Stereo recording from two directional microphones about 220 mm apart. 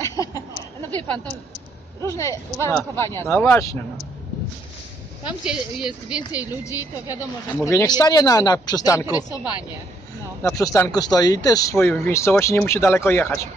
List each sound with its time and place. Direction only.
0.0 s a sound: 15° left (ahead or behind)
0.8 s a woman's voice: 10° left (ahead or behind)
5.2 s a woman's voice: 5° right (ahead or behind)
7.5 s speech: 15° left (ahead or behind)
10.4 s speech: 15° left (ahead or behind)